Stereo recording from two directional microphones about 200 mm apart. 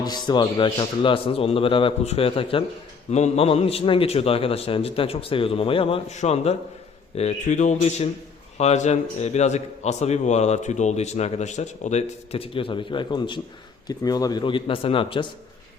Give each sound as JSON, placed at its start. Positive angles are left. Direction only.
{"t": 0.0, "sound": "a man's voice", "side_deg": 20}